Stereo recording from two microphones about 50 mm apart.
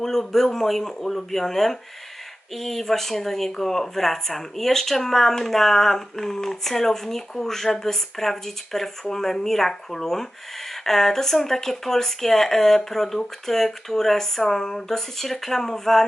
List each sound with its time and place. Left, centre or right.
0.0 s speech: centre